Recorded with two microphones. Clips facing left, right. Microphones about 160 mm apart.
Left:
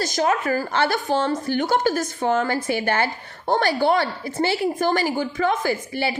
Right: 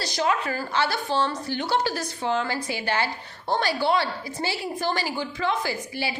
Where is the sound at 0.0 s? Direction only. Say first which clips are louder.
Left 4 dB; 45° left (ahead or behind).